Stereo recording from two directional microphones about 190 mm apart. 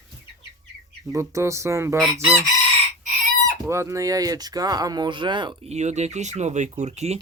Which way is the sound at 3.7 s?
15° right (ahead or behind).